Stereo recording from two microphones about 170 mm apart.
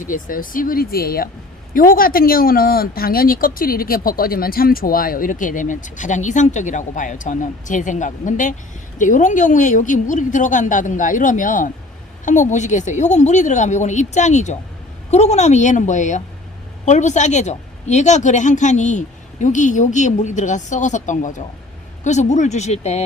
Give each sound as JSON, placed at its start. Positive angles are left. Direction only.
{"t": 0.0, "sound": "a woman's voice", "side_deg": 50}